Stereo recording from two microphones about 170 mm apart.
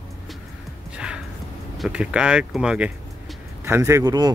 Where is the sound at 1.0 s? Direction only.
5° right (ahead or behind).